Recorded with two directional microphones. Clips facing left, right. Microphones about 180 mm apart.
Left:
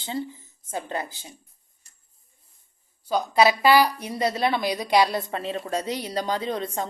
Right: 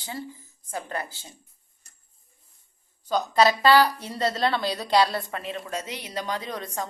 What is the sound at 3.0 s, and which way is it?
A woman's voice, 10° left (ahead or behind).